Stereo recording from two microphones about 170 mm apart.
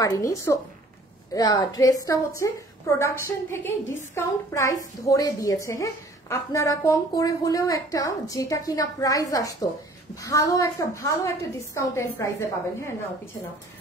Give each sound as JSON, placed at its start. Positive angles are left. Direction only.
{"t": 0.0, "sound": "a woman's voice", "side_deg": 20}